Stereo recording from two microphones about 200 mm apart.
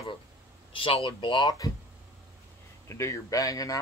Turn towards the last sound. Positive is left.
turn(degrees=15)  # may be behind; listen again after turning